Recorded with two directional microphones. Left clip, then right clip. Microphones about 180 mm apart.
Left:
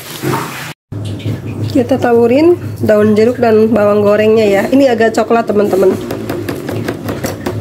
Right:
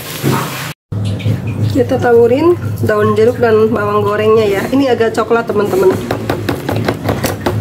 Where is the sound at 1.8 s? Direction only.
25° left (ahead or behind).